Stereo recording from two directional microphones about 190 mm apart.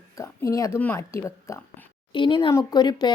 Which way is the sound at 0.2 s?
15° left (ahead or behind).